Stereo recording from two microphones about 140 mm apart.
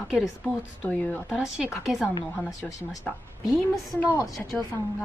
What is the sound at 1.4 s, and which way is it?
Speech, centre (ahead or behind).